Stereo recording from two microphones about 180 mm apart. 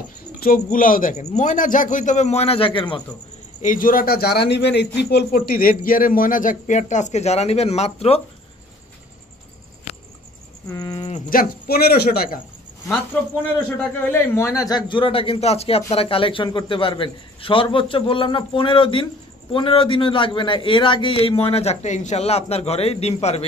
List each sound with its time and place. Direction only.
0.7 s speech: 50° left (ahead or behind); by 3.0 s 30° left (ahead or behind)
3.6 s speech: 50° left (ahead or behind)
10.7 s a man's voice: 20° left (ahead or behind)
11.1 s speech: 45° left (ahead or behind)
13.7 s a man's voice: 15° left (ahead or behind); by 23.4 s 35° left (ahead or behind)